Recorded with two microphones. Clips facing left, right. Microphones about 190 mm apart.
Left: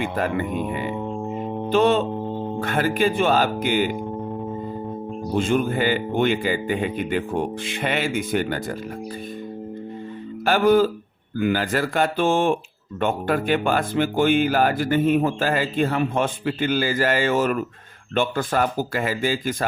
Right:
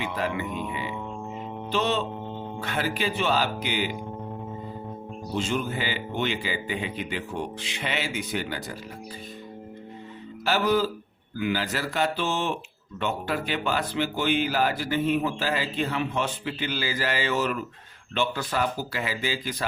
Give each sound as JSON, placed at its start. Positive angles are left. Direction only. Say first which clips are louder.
{"t": 0.0, "sound": "speech", "louder": "left 5 dB", "side_deg": 50}
{"t": 5.3, "sound": "speech", "louder": "left 7 dB", "side_deg": 50}
{"t": 10.4, "sound": "speech", "louder": "left 7 dB", "side_deg": 50}